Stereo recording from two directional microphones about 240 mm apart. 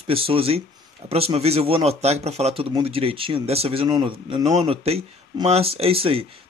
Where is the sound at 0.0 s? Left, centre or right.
Right.